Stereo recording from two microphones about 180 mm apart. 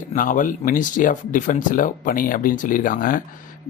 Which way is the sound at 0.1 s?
45° left (ahead or behind).